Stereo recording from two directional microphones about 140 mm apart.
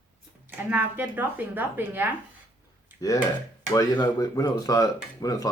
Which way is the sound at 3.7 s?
25° left (ahead or behind).